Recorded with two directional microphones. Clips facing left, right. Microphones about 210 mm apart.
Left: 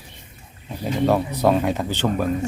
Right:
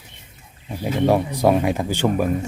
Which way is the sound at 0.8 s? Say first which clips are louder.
Right 1 dB; 5° right (ahead or behind).